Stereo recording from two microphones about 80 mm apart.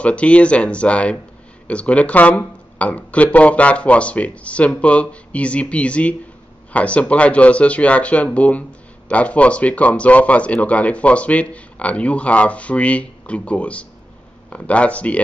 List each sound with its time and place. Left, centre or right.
0.0 s speech: centre